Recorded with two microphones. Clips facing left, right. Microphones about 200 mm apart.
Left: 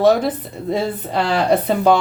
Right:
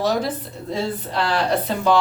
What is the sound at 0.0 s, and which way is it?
Speech, 55° left (ahead or behind).